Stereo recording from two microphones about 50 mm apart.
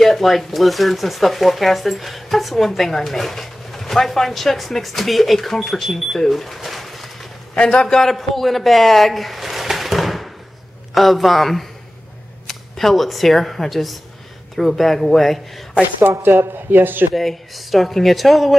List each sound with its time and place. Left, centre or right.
0.0 s speech: centre
7.5 s a man's voice: centre
8.1 s a sound: centre
11.0 s speech: centre
16.1 s speech: right
17.1 s speech: centre